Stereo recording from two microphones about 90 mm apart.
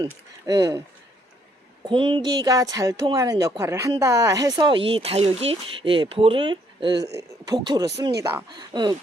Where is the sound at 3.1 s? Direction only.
40° right (ahead or behind).